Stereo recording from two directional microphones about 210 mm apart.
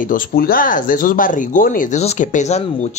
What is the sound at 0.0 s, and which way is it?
Speech, 40° left (ahead or behind).